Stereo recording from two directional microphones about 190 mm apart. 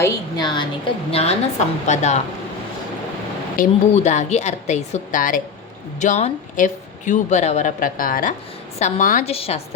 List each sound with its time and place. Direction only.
0.0 s a woman's voice: 20° left (ahead or behind)
1.1 s speech: 35° left (ahead or behind)
3.6 s speech: 35° left (ahead or behind)